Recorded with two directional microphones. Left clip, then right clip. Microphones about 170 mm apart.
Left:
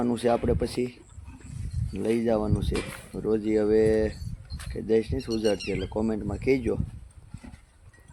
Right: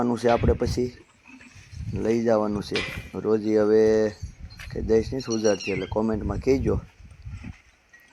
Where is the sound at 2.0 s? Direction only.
10° right (ahead or behind).